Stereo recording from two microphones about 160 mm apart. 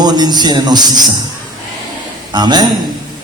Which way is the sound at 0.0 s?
25° right (ahead or behind).